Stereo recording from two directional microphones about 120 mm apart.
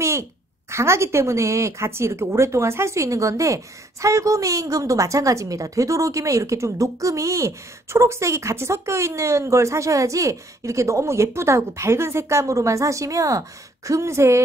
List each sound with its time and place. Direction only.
0.0 s a woman's voice: 25° right (ahead or behind)